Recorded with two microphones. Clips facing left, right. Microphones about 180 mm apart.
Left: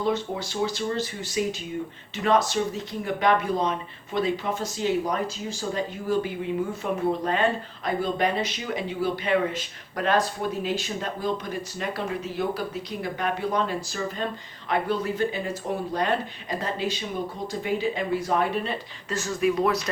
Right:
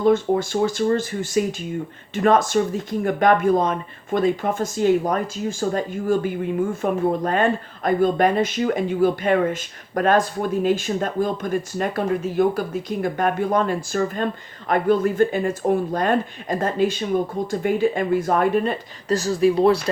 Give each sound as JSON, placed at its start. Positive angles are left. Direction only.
{"t": 0.0, "sound": "speech", "side_deg": -50}